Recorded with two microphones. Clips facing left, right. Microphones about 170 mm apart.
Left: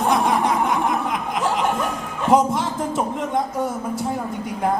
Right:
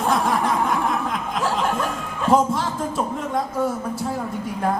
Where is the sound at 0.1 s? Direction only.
20° left (ahead or behind).